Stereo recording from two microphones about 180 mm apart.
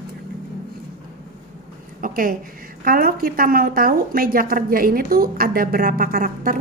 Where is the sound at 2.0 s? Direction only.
50° right (ahead or behind).